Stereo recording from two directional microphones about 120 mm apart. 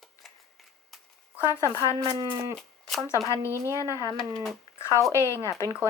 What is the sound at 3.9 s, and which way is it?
Speech, 30° right (ahead or behind).